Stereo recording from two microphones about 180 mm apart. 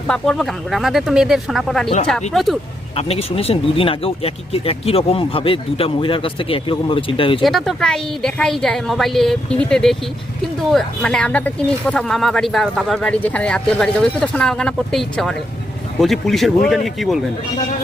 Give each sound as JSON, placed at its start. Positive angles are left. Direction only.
{"t": 0.1, "sound": "speech", "side_deg": 0}
{"t": 2.9, "sound": "speech", "side_deg": 35}
{"t": 7.4, "sound": "speech", "side_deg": 0}